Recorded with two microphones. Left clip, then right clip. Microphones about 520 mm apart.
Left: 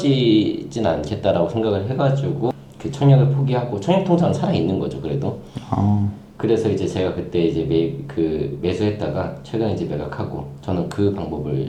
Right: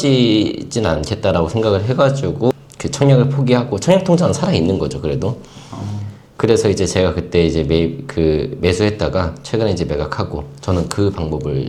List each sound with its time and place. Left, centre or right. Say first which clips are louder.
0.0 s speech: right 3 dB; right
6.4 s speech: right 5 dB; right